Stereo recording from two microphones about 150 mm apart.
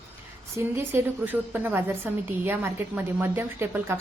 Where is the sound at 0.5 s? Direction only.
15° right (ahead or behind).